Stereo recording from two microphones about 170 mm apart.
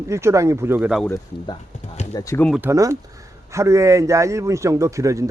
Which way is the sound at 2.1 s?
20° left (ahead or behind).